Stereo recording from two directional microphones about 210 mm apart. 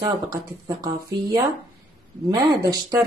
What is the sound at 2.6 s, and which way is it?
Speech, 15° right (ahead or behind).